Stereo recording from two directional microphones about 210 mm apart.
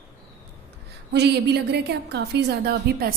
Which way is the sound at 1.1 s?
50° right (ahead or behind).